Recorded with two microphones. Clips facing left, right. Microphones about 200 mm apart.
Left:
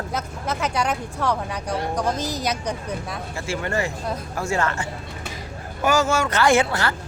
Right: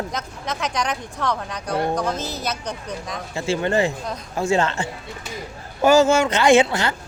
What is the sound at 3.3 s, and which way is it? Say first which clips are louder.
Speech: right 6 dB; 25° right (ahead or behind).